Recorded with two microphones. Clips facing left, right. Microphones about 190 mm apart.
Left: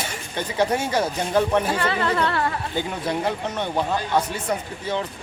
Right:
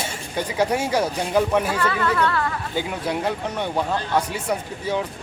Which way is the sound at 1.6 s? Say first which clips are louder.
Even; 25° left (ahead or behind).